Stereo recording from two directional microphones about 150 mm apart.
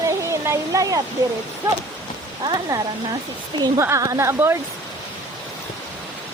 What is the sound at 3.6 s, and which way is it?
Speech, 20° right (ahead or behind).